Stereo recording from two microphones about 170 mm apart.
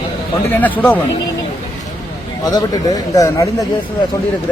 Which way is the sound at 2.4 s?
25° left (ahead or behind).